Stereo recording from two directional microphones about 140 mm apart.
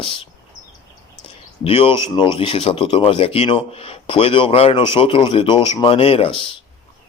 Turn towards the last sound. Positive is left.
turn(degrees=40)  # may be behind; listen again after turning